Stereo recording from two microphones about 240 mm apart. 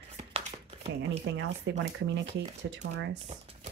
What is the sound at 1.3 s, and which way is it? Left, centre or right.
Speech, right.